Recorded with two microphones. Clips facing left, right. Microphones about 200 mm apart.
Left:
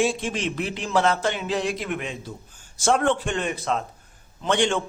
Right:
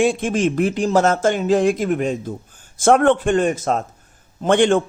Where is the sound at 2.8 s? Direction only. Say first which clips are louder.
Right 7 dB; 55° right (ahead or behind).